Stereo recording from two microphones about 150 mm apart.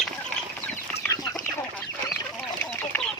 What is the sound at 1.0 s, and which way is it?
Chicken, 10° left (ahead or behind).